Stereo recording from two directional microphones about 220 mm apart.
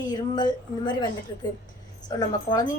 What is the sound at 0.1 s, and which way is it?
Speech, 20° left (ahead or behind).